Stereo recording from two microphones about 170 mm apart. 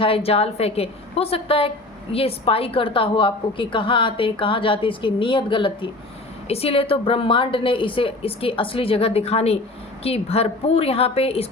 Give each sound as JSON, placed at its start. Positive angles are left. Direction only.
{"t": 0.0, "sound": "a woman's voice", "side_deg": 35}